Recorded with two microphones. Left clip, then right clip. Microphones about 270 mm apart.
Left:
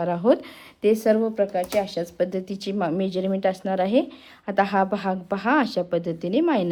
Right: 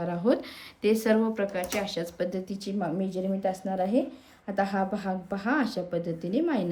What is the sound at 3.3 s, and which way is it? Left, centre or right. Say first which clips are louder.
Speech: left 6 dB; left.